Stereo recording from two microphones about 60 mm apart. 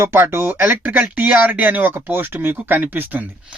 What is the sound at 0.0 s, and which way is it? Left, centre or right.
Speech, right.